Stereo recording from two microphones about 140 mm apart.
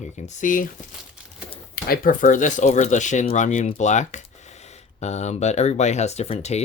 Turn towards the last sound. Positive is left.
turn(degrees=50)  # may be behind; listen again after turning